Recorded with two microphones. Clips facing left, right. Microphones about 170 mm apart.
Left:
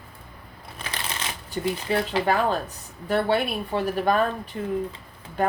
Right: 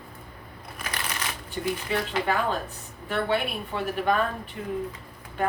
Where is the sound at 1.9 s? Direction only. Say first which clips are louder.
Left 5 dB; 40° left (ahead or behind).